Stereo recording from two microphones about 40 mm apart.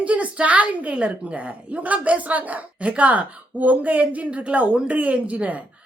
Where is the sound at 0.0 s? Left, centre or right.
Right.